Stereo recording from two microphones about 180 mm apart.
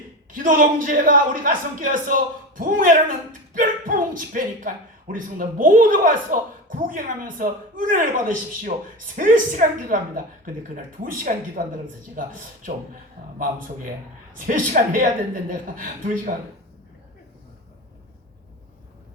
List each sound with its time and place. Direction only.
0.3 s speech: 50° right (ahead or behind)
14.4 s speech: 50° right (ahead or behind)